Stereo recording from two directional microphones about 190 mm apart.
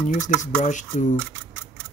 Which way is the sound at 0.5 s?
40° left (ahead or behind).